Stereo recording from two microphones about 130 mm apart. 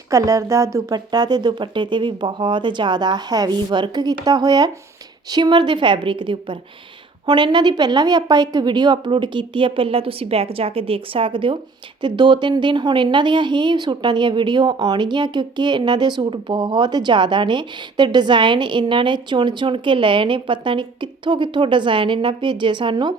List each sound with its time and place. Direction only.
0.1 s speech: 25° right (ahead or behind)